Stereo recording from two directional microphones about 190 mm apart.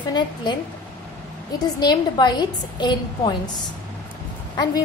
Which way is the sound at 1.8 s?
20° left (ahead or behind).